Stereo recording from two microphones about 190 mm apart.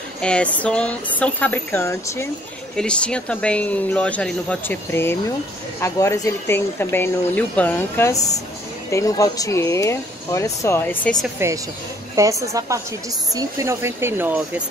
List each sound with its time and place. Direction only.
0.2 s a woman's voice: 5° left (ahead or behind)
11.3 s speech: 15° right (ahead or behind)